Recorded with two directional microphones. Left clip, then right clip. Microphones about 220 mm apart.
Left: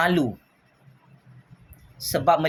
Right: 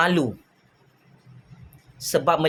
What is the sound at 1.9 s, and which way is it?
Speech, 15° right (ahead or behind).